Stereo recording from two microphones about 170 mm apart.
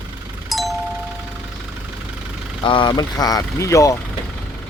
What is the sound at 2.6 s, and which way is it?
Speech, 30° left (ahead or behind).